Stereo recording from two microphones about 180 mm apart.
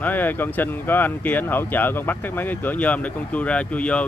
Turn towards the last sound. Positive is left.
turn(degrees=5)  # may be behind; listen again after turning